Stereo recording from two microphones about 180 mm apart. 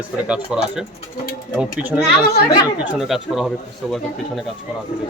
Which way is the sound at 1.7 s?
5° right (ahead or behind).